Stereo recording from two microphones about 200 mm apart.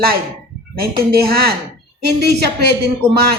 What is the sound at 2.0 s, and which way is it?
Speech, 55° right (ahead or behind).